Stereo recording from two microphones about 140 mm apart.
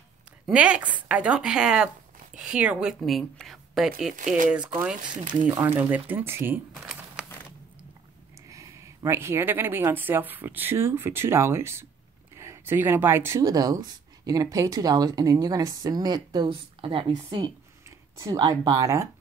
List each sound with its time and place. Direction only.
0.5 s a woman's voice: 10° right (ahead or behind)
5.0 s speech: 35° right (ahead or behind)
5.5 s speech: 15° right (ahead or behind)
6.7 s crumpling: 5° right (ahead or behind)
8.5 s speech: 20° right (ahead or behind)